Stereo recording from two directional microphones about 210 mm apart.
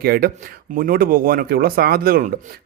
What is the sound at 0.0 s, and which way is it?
A man's voice, 45° right (ahead or behind).